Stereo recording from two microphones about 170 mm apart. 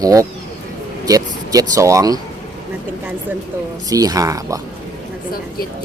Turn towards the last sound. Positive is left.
turn(degrees=-20)  # may be behind; listen again after turning